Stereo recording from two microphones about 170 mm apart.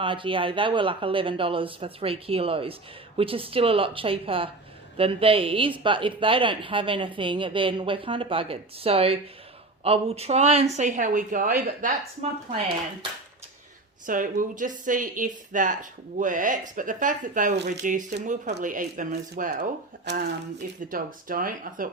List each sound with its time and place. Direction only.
0.0 s speech: 30° right (ahead or behind); by 11.9 s 50° right (ahead or behind)
14.1 s speech: 50° right (ahead or behind)
19.1 s speech: 65° right (ahead or behind)
20.1 s speech: 90° right
20.9 s speech: 55° right (ahead or behind)